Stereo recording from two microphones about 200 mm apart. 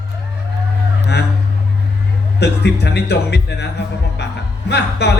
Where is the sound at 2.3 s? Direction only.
55° left (ahead or behind).